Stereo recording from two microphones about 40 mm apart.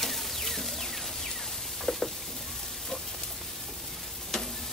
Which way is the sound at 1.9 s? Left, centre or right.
Left.